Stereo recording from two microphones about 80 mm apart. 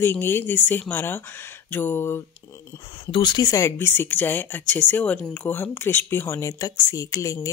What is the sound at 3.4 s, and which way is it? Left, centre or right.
Speech, left.